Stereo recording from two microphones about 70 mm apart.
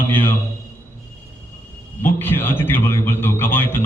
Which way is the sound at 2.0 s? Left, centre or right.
Left.